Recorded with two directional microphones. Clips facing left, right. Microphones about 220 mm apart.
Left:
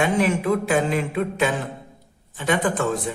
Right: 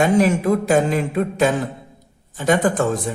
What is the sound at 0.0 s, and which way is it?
Speech, 40° right (ahead or behind).